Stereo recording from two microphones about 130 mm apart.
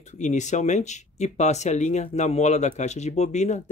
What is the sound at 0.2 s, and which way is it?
Speech, 65° left (ahead or behind).